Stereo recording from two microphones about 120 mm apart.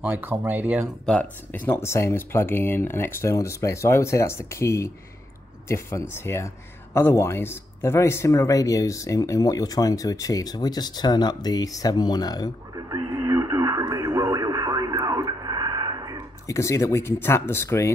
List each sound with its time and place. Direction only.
0.0 s speech: 15° right (ahead or behind)
1.0 s speech: 10° left (ahead or behind); by 12.4 s 35° left (ahead or behind)
12.7 s radio: 30° right (ahead or behind)
16.4 s speech: 25° left (ahead or behind)